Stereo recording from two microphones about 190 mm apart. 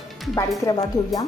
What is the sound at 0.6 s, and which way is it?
Speech, 20° left (ahead or behind).